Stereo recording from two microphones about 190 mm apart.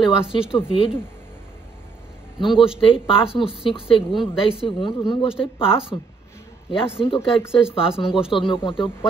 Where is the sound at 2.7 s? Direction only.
30° left (ahead or behind).